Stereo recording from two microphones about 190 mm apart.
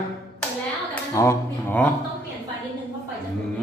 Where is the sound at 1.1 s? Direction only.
15° left (ahead or behind).